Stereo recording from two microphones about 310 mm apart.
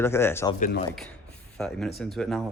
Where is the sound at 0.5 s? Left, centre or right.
Left.